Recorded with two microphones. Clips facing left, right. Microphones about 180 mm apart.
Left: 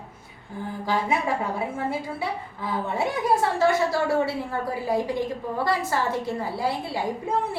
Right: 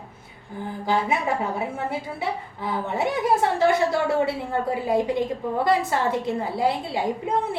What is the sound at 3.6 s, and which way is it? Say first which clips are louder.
A woman's voice: right 1 dB; 20° right (ahead or behind).